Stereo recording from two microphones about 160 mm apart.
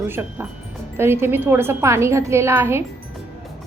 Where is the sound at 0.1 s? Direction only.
10° right (ahead or behind).